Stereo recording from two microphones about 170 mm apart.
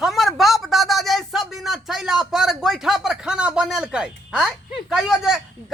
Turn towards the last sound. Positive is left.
turn(degrees=-5)  # may be behind; listen again after turning